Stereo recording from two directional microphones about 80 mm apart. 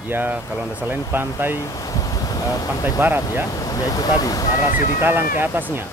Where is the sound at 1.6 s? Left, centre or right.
Left.